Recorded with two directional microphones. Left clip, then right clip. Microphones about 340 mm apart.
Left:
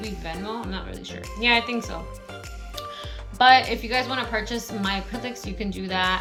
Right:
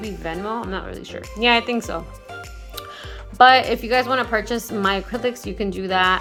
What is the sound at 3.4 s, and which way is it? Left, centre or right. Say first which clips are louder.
Speech: right 4 dB; centre.